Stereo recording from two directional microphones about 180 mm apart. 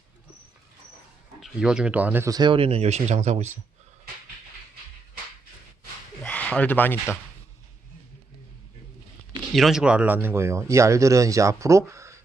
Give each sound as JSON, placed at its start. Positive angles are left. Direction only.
{"t": 1.4, "sound": "speech", "side_deg": -5}
{"t": 6.2, "sound": "speech", "side_deg": 5}
{"t": 9.6, "sound": "speech", "side_deg": 0}